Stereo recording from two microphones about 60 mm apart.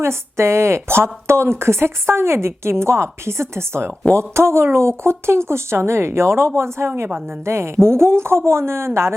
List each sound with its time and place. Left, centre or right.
0.0 s a woman's voice: right